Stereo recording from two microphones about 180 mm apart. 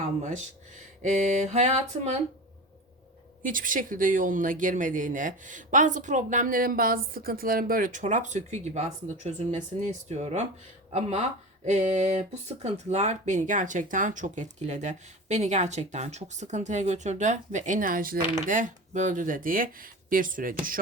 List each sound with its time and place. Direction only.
0.2 s speech: 40° right (ahead or behind)
3.4 s speech: 50° right (ahead or behind)